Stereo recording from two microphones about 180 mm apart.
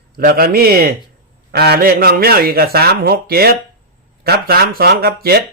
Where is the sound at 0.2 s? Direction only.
55° right (ahead or behind).